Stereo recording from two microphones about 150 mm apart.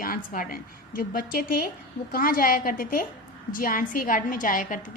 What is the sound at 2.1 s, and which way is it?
A woman's voice, 70° left (ahead or behind).